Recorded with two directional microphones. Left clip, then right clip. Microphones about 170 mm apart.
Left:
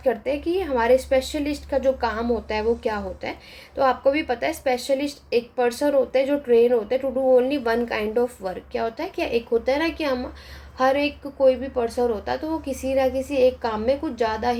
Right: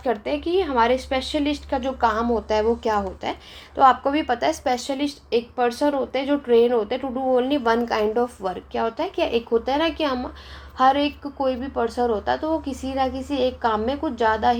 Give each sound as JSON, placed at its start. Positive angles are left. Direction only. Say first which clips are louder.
{"t": 0.0, "sound": "a woman's voice", "louder": "left 1 dB", "side_deg": -25}
{"t": 4.4, "sound": "a woman's voice", "louder": "right 1 dB", "side_deg": -30}